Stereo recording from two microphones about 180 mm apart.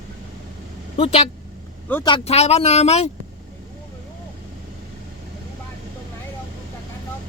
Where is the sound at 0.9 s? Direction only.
30° left (ahead or behind).